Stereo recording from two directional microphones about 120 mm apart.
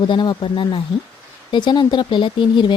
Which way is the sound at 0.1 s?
40° left (ahead or behind).